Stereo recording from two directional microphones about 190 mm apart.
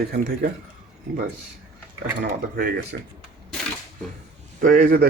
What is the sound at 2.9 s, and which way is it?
Speech, 60° right (ahead or behind).